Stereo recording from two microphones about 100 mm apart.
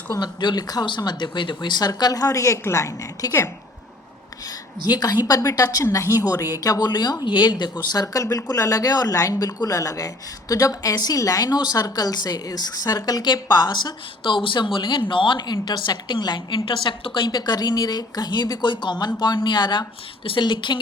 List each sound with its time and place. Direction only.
0.1 s a woman's voice: 45° left (ahead or behind)
4.9 s a woman's voice: 40° left (ahead or behind)
8.0 s a woman's voice: 35° left (ahead or behind); by 20.7 s 50° left (ahead or behind)